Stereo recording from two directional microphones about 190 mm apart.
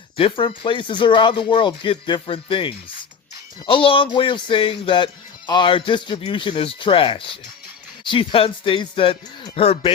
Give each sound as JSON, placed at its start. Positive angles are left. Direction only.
{"t": 0.2, "sound": "speech", "side_deg": 25}